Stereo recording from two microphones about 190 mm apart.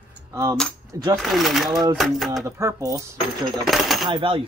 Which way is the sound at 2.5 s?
15° right (ahead or behind).